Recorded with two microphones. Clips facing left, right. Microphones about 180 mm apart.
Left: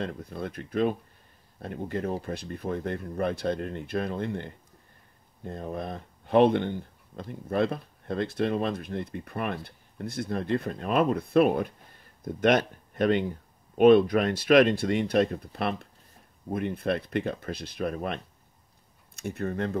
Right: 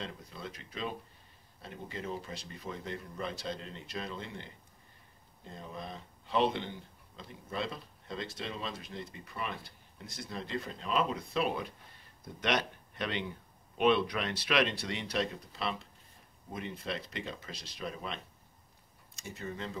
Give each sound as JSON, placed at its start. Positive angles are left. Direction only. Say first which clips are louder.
{"t": 0.0, "sound": "speech", "louder": "left 9 dB", "side_deg": 55}